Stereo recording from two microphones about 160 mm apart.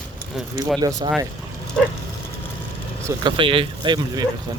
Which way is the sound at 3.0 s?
20° right (ahead or behind).